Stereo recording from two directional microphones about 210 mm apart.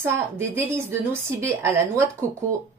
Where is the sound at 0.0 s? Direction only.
10° right (ahead or behind).